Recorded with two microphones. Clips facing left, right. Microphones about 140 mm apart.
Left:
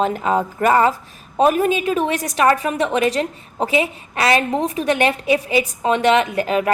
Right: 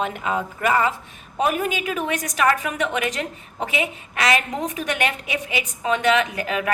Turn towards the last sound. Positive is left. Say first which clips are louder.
# left 6 dB
turn(degrees=35)  # may be behind; listen again after turning